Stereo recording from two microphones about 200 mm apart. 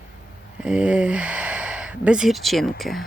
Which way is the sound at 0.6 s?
5° right (ahead or behind).